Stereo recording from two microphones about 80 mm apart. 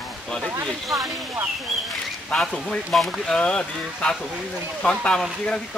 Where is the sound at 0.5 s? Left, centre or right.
Right.